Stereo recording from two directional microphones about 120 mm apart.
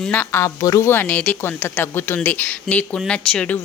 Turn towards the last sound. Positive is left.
turn(degrees=10)  # may be behind; listen again after turning